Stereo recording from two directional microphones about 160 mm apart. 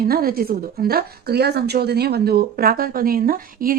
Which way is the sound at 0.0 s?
70° right (ahead or behind).